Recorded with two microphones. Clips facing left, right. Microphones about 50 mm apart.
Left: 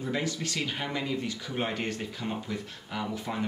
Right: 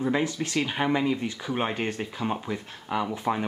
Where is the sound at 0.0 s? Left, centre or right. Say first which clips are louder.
Right 5 dB; right.